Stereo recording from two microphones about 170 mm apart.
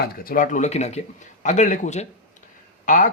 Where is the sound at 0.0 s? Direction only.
55° left (ahead or behind).